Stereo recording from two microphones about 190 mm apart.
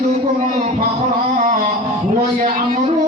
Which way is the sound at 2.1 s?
45° right (ahead or behind).